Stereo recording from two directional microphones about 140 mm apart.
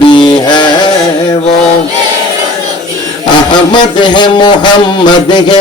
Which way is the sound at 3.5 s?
35° left (ahead or behind).